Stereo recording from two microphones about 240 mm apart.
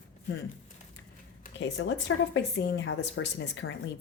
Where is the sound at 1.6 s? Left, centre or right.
Left.